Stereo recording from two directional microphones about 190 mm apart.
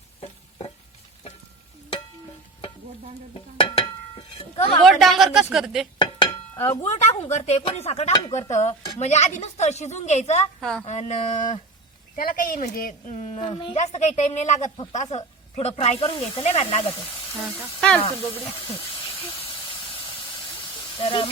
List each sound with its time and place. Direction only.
3.6 s a sound: 25° left (ahead or behind)
4.8 s speech: centre (ahead or behind)
6.0 s a sound: 25° left (ahead or behind)
6.8 s speech: 35° left (ahead or behind)
10.6 s a sound: centre (ahead or behind)
10.8 s speech: 40° left (ahead or behind)
13.7 s speech: 40° left (ahead or behind)
17.5 s speech: 5° left (ahead or behind)
19.4 s hiss: 25° left (ahead or behind)
21.0 s speech: 30° left (ahead or behind)